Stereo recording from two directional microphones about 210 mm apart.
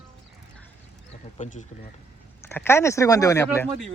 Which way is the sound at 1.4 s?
35° left (ahead or behind).